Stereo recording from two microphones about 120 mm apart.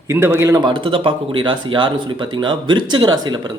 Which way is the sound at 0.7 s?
45° right (ahead or behind).